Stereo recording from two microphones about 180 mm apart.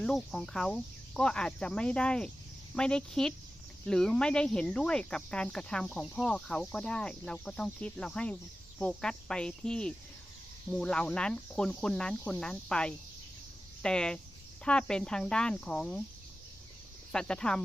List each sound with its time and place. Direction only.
0.0 s speech: 5° left (ahead or behind)
17.1 s speech: 5° left (ahead or behind)